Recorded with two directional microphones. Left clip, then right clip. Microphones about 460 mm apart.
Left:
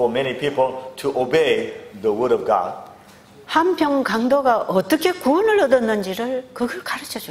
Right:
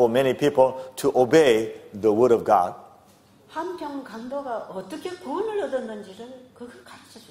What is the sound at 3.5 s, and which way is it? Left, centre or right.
A woman's voice, left.